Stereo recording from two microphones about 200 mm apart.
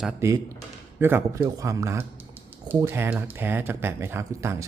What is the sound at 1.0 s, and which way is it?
A man's voice, 10° right (ahead or behind).